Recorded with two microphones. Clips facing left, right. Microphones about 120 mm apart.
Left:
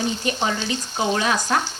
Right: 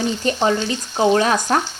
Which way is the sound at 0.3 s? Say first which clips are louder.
Right 8 dB; 35° right (ahead or behind).